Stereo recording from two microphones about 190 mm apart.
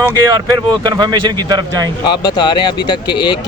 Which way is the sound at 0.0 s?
20° right (ahead or behind).